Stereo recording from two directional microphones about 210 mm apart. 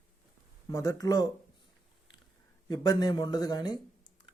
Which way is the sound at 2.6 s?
20° left (ahead or behind).